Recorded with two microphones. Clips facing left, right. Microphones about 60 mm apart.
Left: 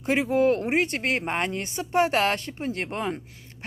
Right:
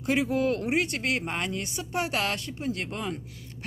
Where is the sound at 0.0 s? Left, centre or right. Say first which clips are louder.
Left 4 dB; left.